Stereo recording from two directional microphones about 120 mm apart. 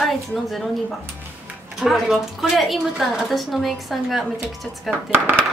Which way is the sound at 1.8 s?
5° right (ahead or behind).